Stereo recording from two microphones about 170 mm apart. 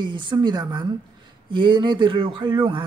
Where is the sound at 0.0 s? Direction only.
25° right (ahead or behind).